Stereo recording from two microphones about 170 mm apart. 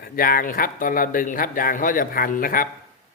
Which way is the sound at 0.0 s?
60° left (ahead or behind).